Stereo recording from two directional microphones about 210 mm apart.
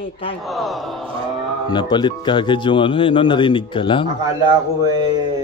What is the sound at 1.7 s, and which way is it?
Speech, 20° left (ahead or behind).